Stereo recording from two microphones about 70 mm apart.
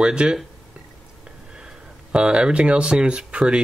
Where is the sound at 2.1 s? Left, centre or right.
Centre.